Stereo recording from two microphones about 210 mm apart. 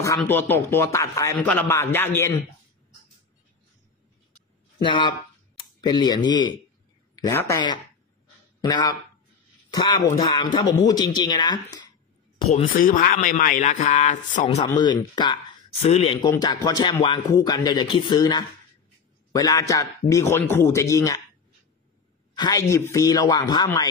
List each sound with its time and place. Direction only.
0.0 s a man's voice: 10° left (ahead or behind)
4.8 s a man's voice: 25° left (ahead or behind)
12.7 s a man's voice: 45° left (ahead or behind)
14.7 s a man's voice: 20° left (ahead or behind)
22.3 s a man's voice: 20° left (ahead or behind)